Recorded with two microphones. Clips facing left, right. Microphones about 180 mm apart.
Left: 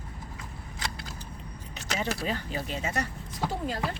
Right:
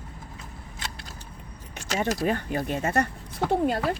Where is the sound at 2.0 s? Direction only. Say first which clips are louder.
Right 6 dB; 55° right (ahead or behind).